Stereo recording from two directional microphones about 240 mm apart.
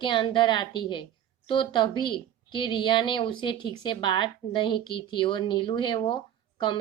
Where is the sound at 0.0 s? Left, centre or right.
Left.